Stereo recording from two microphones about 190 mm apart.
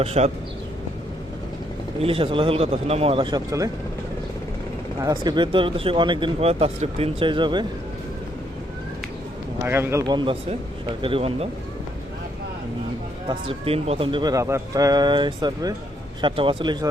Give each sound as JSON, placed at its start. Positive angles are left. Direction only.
{"t": 0.0, "sound": "speech", "side_deg": -35}
{"t": 2.0, "sound": "speech", "side_deg": -30}
{"t": 4.9, "sound": "speech", "side_deg": -20}
{"t": 9.6, "sound": "speech", "side_deg": -10}
{"t": 13.2, "sound": "speech", "side_deg": -30}